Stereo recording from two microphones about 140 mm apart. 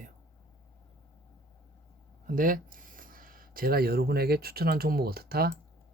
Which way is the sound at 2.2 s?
80° right.